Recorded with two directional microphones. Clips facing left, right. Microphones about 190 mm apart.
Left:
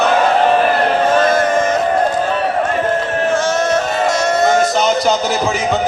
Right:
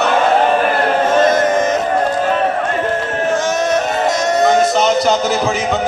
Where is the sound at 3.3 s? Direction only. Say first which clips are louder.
Right 1 dB; 20° right (ahead or behind).